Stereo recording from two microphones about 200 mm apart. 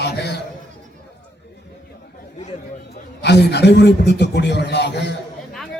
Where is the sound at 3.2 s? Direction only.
55° left (ahead or behind).